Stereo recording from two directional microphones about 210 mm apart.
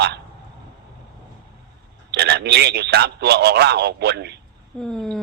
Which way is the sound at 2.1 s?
50° right (ahead or behind).